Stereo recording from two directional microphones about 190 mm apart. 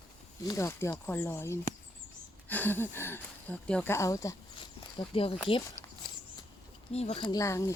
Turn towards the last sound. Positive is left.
turn(degrees=15)  # may be behind; listen again after turning